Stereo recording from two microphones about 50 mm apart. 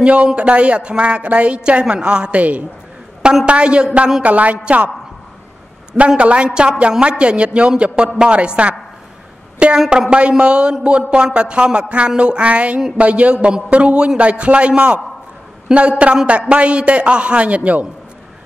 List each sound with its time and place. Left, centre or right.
0.0 s a woman's voice: right
3.4 s a woman's voice: right
5.9 s a woman's voice: right
9.8 s a woman's voice: centre